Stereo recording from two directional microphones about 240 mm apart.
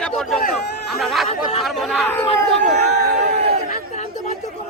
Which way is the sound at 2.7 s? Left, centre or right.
Right.